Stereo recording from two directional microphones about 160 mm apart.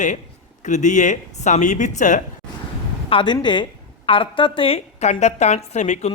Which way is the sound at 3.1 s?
30° left (ahead or behind).